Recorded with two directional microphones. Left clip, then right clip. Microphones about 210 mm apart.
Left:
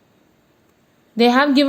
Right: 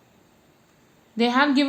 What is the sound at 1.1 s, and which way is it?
Speech, 35° left (ahead or behind).